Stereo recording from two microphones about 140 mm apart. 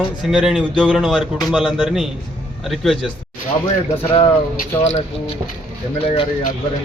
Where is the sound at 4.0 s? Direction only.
40° left (ahead or behind).